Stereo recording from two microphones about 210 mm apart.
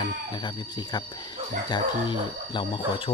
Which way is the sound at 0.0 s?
20° left (ahead or behind).